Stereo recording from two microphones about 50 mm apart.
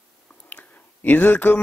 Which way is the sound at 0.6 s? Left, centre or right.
Left.